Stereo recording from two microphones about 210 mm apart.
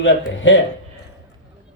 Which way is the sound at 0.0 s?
60° left (ahead or behind).